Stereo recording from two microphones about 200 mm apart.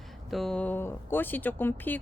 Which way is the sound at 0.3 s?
Centre (ahead or behind).